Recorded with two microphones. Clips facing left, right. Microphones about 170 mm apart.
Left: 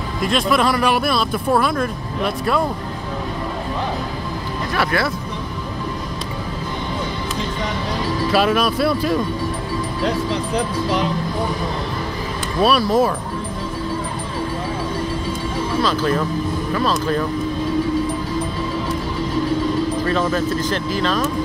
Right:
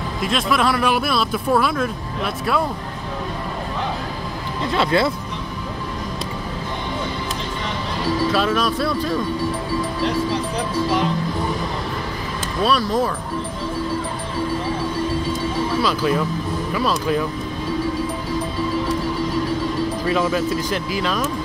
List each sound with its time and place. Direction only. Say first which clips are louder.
0.2 s speech: left 2 dB; centre (ahead or behind)
4.7 s speech: right 2 dB; 20° right (ahead or behind)
8.3 s speech: left 6 dB; 5° left (ahead or behind)
12.6 s speech: left 3 dB; 10° left (ahead or behind)
15.8 s speech: left 2 dB; 10° right (ahead or behind)
20.1 s speech: even; 10° right (ahead or behind)